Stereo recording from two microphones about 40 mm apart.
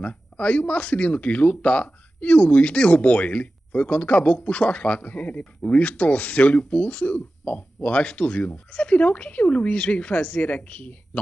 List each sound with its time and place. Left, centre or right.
0.0 s speech: left